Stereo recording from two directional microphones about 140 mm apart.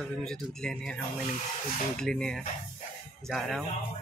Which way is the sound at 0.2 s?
5° left (ahead or behind).